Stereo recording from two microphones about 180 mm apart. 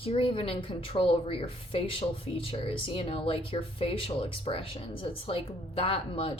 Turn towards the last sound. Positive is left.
turn(degrees=30)  # may be behind; listen again after turning